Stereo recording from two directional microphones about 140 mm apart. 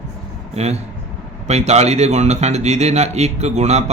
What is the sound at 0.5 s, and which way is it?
A man's voice, 50° right (ahead or behind).